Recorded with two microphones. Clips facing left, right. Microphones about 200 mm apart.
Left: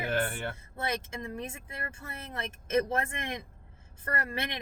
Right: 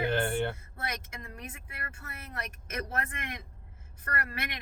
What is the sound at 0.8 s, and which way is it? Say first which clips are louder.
Speech: left 5 dB; 25° left (ahead or behind).